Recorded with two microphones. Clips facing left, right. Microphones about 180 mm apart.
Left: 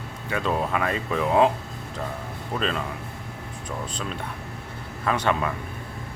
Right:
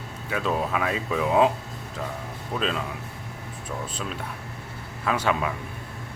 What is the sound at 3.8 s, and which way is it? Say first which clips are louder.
Speech: left 1 dB; 5° right (ahead or behind).